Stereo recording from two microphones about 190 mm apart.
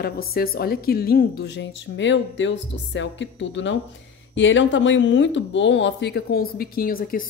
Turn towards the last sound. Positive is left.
turn(degrees=50)  # may be behind; listen again after turning